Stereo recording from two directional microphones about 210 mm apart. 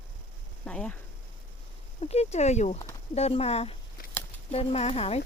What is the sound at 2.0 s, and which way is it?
Speech, 30° left (ahead or behind).